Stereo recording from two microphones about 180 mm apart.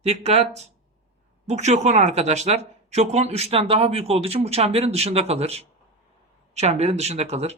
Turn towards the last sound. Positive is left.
turn(degrees=-35)  # may be behind; listen again after turning